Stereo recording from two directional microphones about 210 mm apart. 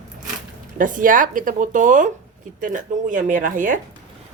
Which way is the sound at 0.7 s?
40° right (ahead or behind).